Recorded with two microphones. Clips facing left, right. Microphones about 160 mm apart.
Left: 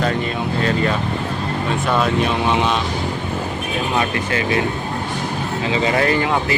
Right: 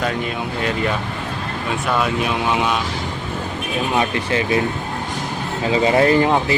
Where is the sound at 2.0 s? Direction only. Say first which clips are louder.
Left 3 dB; 5° right (ahead or behind).